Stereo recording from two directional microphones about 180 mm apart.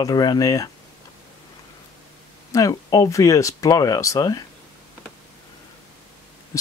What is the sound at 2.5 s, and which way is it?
Speech, 20° left (ahead or behind).